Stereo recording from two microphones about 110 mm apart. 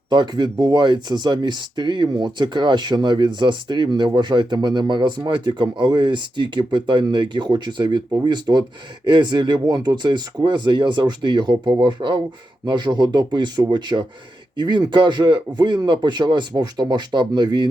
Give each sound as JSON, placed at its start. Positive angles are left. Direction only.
{"t": 0.1, "sound": "speech", "side_deg": -40}